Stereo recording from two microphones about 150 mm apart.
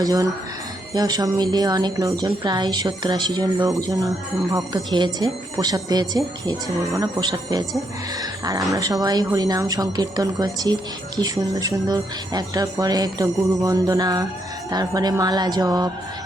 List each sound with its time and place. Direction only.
0.0 s speech: 25° right (ahead or behind)